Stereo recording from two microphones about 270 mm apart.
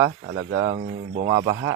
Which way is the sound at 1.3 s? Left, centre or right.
Centre.